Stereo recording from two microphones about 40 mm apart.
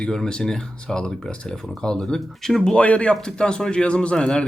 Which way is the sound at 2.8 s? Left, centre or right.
Left.